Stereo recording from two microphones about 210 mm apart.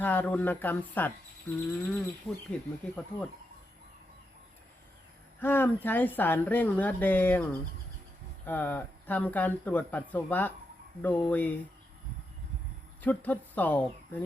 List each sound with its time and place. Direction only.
0.0 s a woman's voice: 10° left (ahead or behind)
5.4 s a woman's voice: 10° left (ahead or behind)
8.4 s a woman's voice: 10° left (ahead or behind)
13.0 s speech: 10° left (ahead or behind)